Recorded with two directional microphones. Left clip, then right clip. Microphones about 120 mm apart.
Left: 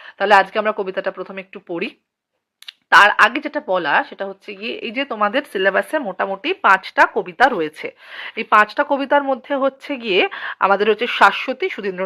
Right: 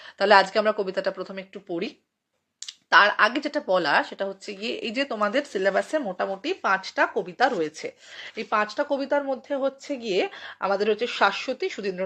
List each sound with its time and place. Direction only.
0.2 s speech: 10° left (ahead or behind); by 1.9 s 35° left (ahead or behind)
2.6 s speech: 25° left (ahead or behind)